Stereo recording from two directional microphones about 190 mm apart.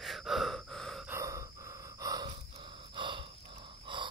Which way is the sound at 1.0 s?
15° right (ahead or behind).